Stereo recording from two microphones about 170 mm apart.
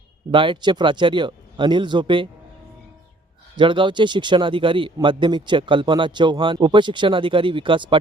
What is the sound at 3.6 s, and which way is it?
A man's voice, 30° right (ahead or behind).